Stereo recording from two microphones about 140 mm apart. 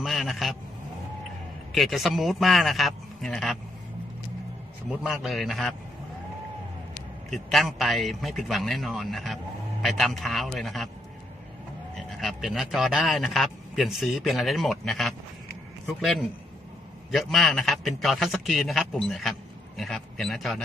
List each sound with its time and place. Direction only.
0.0 s a man's voice: centre (ahead or behind)
1.7 s a man's voice: centre (ahead or behind)
4.9 s a man's voice: 5° right (ahead or behind)
7.3 s a man's voice: centre (ahead or behind)
11.9 s a man's voice: centre (ahead or behind)